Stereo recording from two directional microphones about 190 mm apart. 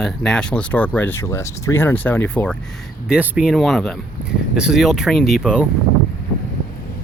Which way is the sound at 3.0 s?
5° right (ahead or behind).